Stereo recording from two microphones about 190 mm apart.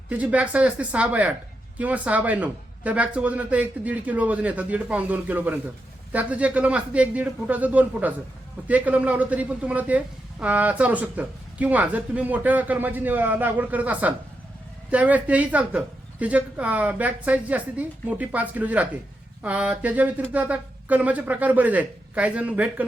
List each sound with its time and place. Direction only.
0.1 s speech: 5° right (ahead or behind)